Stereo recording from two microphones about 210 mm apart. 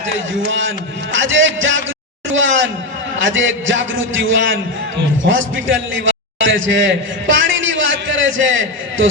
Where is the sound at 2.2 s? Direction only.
65° right (ahead or behind).